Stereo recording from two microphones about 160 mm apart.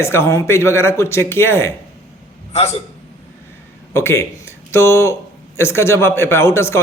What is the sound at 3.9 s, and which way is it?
Speech, 15° left (ahead or behind).